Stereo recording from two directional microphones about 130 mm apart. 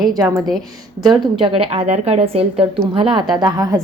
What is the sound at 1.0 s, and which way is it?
A woman's voice, 35° right (ahead or behind).